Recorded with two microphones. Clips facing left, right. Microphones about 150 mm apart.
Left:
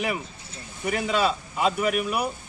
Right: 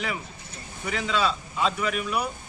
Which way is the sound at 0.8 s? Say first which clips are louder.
Left 2 dB; 50° left (ahead or behind).